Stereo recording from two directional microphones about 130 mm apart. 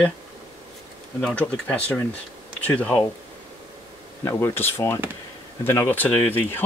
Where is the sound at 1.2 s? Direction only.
10° left (ahead or behind).